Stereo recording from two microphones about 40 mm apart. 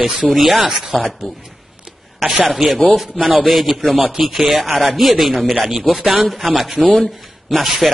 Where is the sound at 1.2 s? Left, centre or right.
Centre.